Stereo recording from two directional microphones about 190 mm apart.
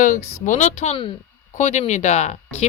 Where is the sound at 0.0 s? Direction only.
40° left (ahead or behind).